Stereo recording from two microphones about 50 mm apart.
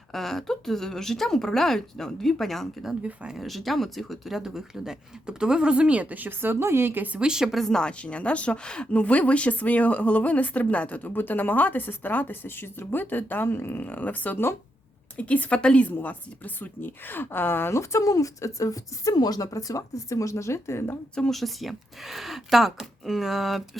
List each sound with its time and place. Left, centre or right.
0.1 s speech: centre
3.0 s speech: right
3.3 s speech: centre; by 6.9 s right
6.9 s speech: right
7.2 s speech: centre
7.5 s a woman's voice: centre; by 11.1 s left
11.1 s speech: left
13.8 s a woman's voice: left
16.0 s speech: left
17.7 s speech: left
19.7 s speech: left
21.2 s speech: centre